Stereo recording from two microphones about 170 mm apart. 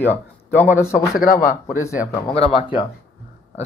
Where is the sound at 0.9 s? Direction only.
Centre (ahead or behind).